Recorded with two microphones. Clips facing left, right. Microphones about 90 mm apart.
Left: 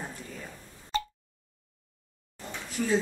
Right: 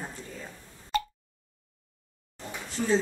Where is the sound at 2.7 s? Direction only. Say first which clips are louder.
Right 1 dB; 25° right (ahead or behind).